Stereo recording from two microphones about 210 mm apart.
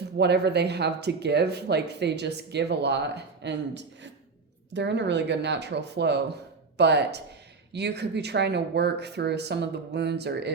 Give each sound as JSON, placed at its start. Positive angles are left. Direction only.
{"t": 0.2, "sound": "speech", "side_deg": -55}